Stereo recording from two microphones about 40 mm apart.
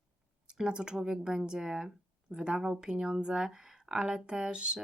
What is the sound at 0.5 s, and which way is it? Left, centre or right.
Speech, right.